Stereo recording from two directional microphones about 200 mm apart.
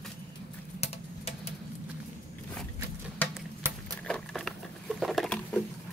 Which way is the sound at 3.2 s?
10° left (ahead or behind).